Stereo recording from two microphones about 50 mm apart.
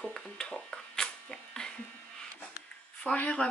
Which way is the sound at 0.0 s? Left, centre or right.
Centre.